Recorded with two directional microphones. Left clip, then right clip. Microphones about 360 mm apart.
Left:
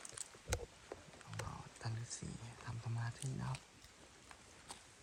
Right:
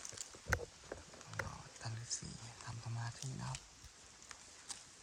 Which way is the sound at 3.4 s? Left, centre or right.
Centre.